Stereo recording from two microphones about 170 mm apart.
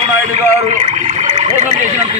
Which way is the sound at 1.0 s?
40° right (ahead or behind).